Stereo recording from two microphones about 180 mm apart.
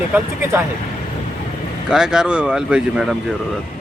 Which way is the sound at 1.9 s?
5° right (ahead or behind).